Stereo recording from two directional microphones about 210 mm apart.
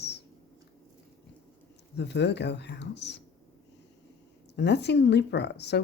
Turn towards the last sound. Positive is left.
turn(degrees=55)  # may be behind; listen again after turning